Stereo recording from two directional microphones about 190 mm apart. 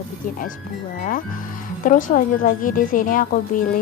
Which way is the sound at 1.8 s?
45° left (ahead or behind).